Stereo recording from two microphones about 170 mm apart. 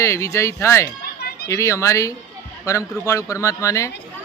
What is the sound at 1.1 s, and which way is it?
Children playing, 70° left (ahead or behind).